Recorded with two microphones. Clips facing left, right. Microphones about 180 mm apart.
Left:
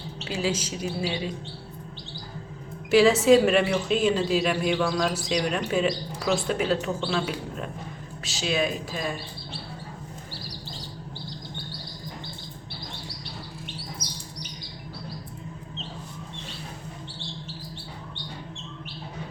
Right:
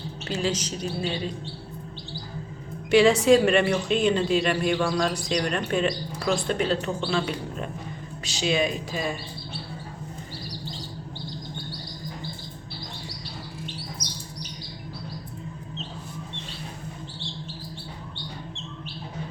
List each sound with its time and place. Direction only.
0.3 s a woman's voice: 10° left (ahead or behind)
2.9 s a woman's voice: centre (ahead or behind)